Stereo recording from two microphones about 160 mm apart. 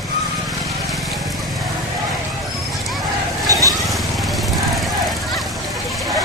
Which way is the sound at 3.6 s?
Centre (ahead or behind).